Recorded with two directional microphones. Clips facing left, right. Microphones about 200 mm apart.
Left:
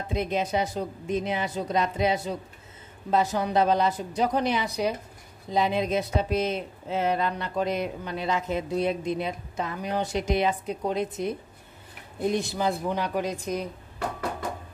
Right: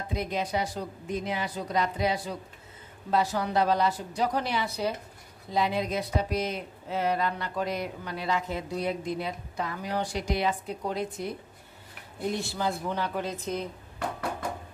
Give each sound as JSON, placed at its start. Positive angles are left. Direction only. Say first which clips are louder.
{"t": 0.1, "sound": "speech", "louder": "left 4 dB", "side_deg": 25}